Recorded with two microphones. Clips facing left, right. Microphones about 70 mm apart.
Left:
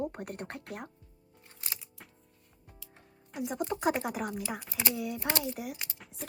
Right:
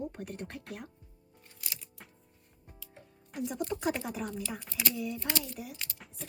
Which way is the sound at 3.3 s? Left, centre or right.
Centre.